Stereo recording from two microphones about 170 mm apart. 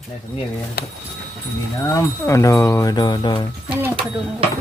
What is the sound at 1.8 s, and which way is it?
Speech, 15° left (ahead or behind).